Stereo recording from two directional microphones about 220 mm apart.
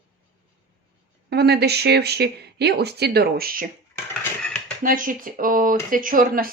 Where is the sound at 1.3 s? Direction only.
45° right (ahead or behind).